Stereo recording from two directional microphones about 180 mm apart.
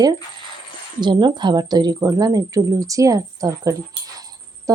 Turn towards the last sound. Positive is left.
turn(degrees=-20)  # may be behind; listen again after turning